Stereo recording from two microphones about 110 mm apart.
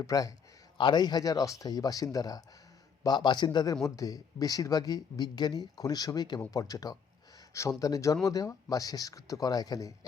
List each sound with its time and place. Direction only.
0.0 s speech: 35° left (ahead or behind)